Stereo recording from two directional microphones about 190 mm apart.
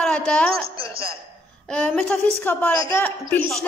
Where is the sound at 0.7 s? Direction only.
30° right (ahead or behind).